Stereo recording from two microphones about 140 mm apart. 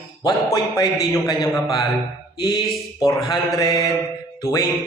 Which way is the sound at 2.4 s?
30° left (ahead or behind).